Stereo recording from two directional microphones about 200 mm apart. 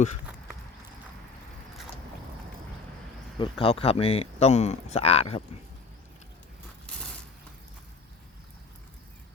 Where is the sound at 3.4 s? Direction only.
30° left (ahead or behind).